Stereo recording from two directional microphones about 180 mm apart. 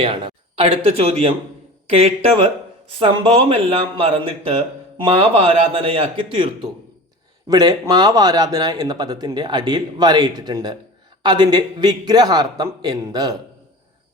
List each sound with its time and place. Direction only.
0.0 s a man's voice: 25° right (ahead or behind)